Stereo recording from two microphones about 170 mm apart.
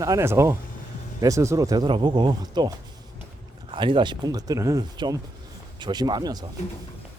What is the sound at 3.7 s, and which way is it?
Speech, 30° right (ahead or behind).